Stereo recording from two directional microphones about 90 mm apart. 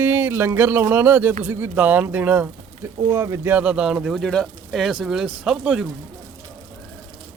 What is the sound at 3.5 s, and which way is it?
Speech, 15° right (ahead or behind).